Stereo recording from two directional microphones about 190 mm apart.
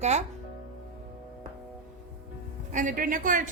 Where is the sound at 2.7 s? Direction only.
45° right (ahead or behind).